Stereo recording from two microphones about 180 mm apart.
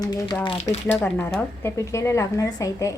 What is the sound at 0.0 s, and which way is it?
Speech, 20° left (ahead or behind).